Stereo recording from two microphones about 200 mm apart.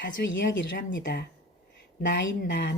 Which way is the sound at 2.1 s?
60° left (ahead or behind).